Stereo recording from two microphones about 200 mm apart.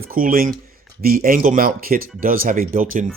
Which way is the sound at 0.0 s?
45° right (ahead or behind).